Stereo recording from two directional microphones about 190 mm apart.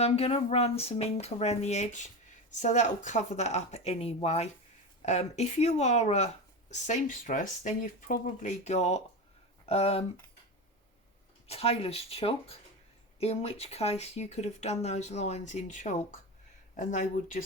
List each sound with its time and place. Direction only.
0.0 s speech: 30° left (ahead or behind)
11.4 s speech: 30° left (ahead or behind)